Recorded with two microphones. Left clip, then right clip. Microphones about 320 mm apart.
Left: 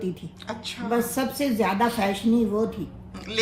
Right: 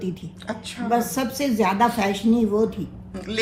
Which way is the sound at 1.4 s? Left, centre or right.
Right.